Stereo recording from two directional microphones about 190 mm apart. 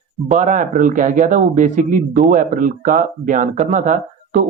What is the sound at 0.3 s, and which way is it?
Speech, 40° right (ahead or behind).